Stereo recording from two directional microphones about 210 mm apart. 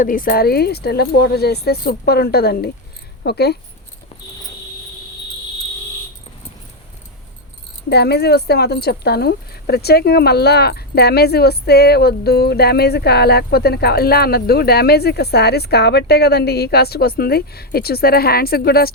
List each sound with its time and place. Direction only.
0.0 s speech: 40° left (ahead or behind)
7.9 s speech: 50° left (ahead or behind)